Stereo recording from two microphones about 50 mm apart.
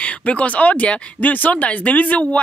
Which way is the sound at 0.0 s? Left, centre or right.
Left.